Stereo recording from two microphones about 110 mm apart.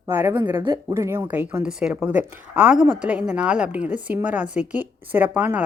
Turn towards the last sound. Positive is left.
turn(degrees=-15)  # may be behind; listen again after turning